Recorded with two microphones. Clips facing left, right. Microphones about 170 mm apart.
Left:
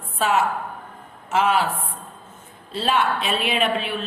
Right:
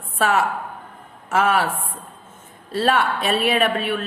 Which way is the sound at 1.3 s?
50° right (ahead or behind).